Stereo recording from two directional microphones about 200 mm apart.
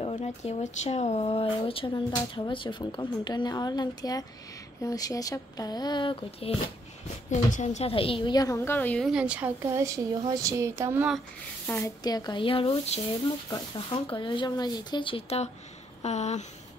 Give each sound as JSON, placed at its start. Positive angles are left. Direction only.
{"t": 0.0, "sound": "speech", "side_deg": 35}
{"t": 7.2, "sound": "a woman's voice", "side_deg": 35}
{"t": 11.6, "sound": "speech", "side_deg": 15}